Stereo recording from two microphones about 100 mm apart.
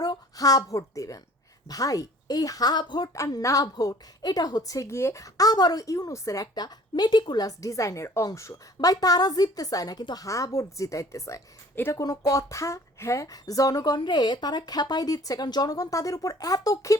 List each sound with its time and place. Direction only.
0.0 s a woman's voice: 40° left (ahead or behind)
3.2 s a woman's voice: 35° left (ahead or behind)
10.2 s a woman's voice: 35° left (ahead or behind)
11.7 s a woman's voice: 20° left (ahead or behind)
11.9 s a woman's voice: 35° left (ahead or behind)